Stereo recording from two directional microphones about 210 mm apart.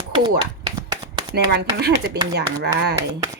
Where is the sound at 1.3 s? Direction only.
50° right (ahead or behind).